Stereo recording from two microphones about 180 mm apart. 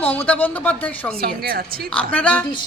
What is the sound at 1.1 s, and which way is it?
Speech, 60° right (ahead or behind).